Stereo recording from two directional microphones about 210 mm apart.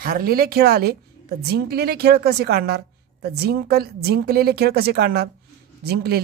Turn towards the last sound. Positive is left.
turn(degrees=-50)  # may be behind; listen again after turning